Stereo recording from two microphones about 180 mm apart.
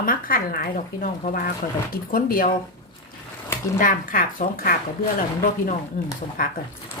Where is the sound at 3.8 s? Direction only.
50° left (ahead or behind).